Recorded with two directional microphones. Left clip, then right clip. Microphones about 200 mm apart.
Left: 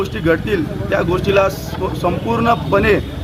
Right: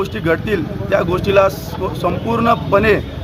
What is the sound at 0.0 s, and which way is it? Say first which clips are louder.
A man's voice: left 1 dB; 10° right (ahead or behind).